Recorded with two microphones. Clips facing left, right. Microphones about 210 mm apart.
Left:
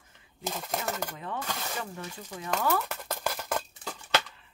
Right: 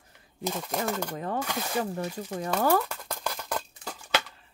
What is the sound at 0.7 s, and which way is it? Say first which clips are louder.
Speech: right 4 dB; 5° left (ahead or behind).